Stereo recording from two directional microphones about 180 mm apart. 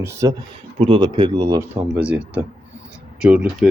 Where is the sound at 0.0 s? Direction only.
15° right (ahead or behind).